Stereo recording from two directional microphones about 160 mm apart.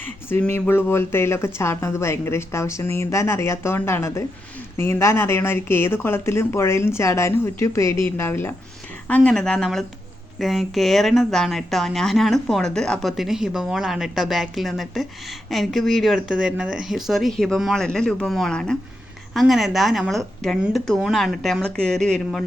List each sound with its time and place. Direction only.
0.0 s speech: 15° left (ahead or behind)